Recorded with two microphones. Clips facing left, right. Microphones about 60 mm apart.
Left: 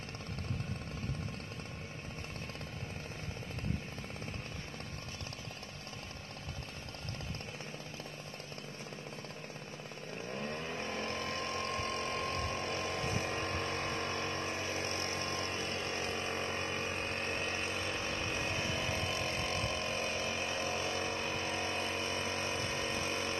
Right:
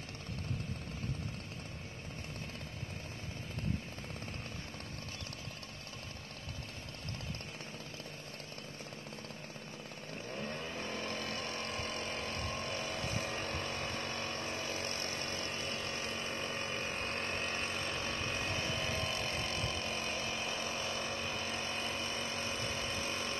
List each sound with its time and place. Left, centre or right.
10.3 s vehicle: centre
11.0 s vehicle: left
16.8 s vehicle: centre
17.9 s vehicle: centre
19.3 s vehicle: left